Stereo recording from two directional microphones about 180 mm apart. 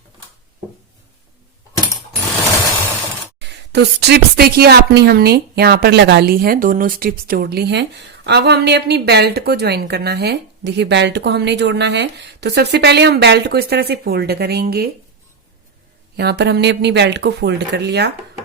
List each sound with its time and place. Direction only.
3.3 s a woman's voice: 70° right (ahead or behind)
16.1 s speech: 65° right (ahead or behind)